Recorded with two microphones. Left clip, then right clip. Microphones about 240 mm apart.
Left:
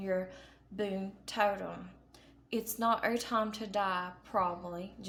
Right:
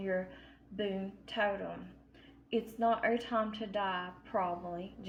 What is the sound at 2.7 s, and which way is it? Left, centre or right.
A woman's voice, left.